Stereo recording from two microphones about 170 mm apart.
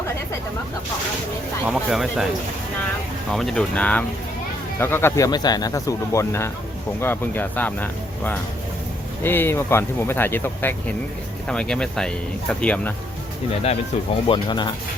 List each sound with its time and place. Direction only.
1.6 s speech: centre (ahead or behind)
3.3 s speech: centre (ahead or behind)
14.3 s speech: 25° left (ahead or behind)